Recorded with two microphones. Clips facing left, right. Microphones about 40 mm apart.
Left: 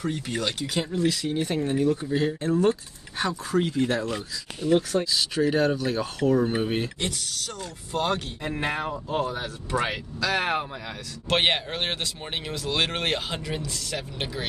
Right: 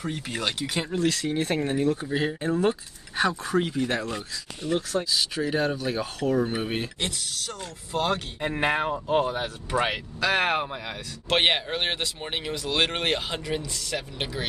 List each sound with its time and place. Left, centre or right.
0.0 s speech: centre
0.4 s speech: right
1.0 s speech: right
1.3 s speech: right
2.0 s speech: centre
4.6 s speech: centre
8.4 s speech: right
11.2 s speech: centre